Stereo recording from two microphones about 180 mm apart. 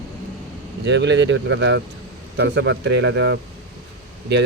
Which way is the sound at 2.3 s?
75° right (ahead or behind).